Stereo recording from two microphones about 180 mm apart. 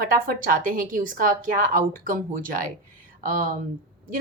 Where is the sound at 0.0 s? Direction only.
50° right (ahead or behind).